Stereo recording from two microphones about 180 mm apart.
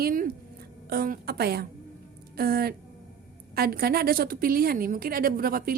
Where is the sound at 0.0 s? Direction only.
50° right (ahead or behind).